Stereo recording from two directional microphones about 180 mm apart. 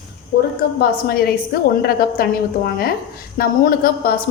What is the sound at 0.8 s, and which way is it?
A woman's voice, 55° left (ahead or behind).